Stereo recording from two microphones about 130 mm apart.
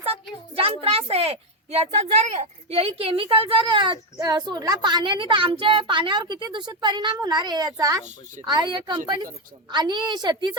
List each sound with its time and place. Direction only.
0.0 s a child's voice: 50° right (ahead or behind)